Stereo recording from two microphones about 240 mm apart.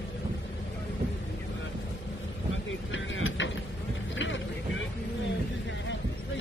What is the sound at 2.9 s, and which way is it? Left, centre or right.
Mechanisms, left.